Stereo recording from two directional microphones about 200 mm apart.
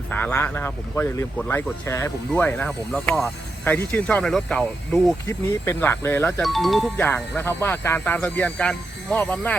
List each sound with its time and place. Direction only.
0.1 s speech: 10° left (ahead or behind)